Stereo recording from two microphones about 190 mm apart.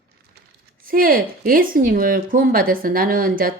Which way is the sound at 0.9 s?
50° right (ahead or behind).